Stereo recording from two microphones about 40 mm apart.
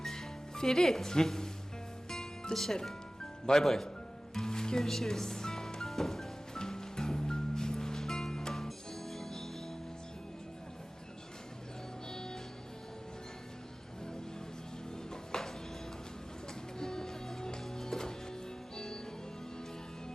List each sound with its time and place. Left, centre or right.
0.0 s music: centre
3.4 s speech: centre
4.4 s music: centre
12.1 s music: centre
15.1 s music: centre
16.8 s music: centre